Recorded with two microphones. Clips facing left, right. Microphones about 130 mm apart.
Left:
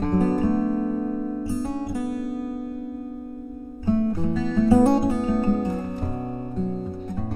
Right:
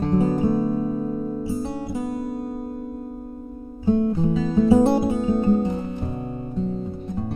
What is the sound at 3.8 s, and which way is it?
Music, 20° right (ahead or behind).